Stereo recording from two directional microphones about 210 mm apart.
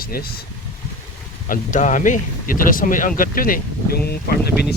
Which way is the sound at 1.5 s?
35° left (ahead or behind).